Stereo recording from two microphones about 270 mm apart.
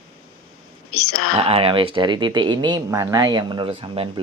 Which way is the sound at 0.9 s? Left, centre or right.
Left.